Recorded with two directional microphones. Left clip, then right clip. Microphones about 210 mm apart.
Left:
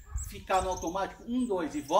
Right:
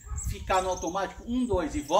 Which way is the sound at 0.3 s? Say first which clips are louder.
Right 2 dB; 5° left (ahead or behind).